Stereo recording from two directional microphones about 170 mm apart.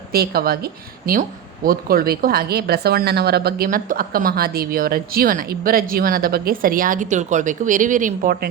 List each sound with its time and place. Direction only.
0.1 s a woman's voice: 65° right (ahead or behind)